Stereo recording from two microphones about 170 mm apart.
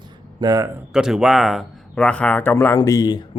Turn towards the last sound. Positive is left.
turn(degrees=20)  # may be behind; listen again after turning